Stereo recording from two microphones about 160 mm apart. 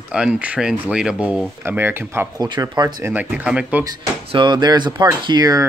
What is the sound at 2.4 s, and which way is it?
Speech, 25° right (ahead or behind).